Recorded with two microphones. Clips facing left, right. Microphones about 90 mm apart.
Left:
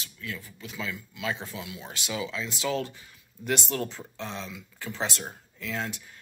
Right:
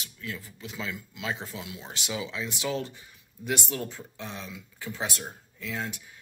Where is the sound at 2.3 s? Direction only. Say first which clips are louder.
Left 2 dB; 15° right (ahead or behind).